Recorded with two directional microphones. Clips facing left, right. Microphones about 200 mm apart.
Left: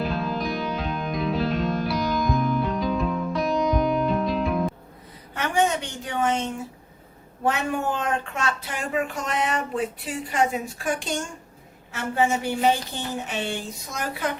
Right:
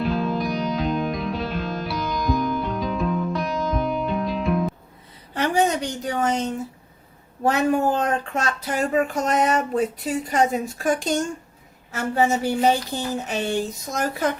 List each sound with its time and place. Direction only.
0.0 s music: centre (ahead or behind)
5.3 s a sound: 35° right (ahead or behind)
7.4 s speech: 40° right (ahead or behind)